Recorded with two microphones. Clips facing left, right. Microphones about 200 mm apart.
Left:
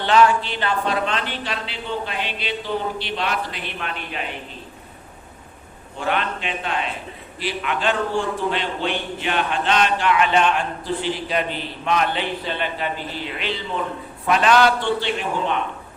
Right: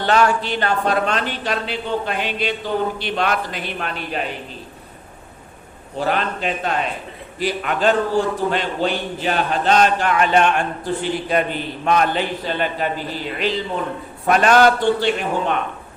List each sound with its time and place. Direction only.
0.0 s a man's voice: 45° right (ahead or behind)
6.0 s a man's voice: 40° right (ahead or behind)
14.3 s a man's voice: 45° right (ahead or behind)